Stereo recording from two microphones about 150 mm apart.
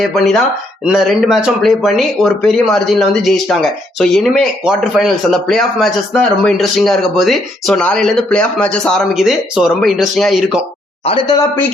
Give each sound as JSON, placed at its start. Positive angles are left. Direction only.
{"t": 0.0, "sound": "speech", "side_deg": 0}